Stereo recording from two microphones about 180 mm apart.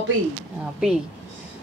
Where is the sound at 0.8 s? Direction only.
5° right (ahead or behind).